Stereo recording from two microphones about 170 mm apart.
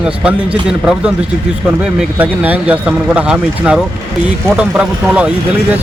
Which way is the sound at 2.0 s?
10° right (ahead or behind).